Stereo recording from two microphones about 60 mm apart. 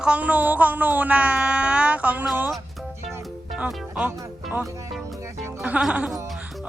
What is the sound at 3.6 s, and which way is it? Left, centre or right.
Speech, right.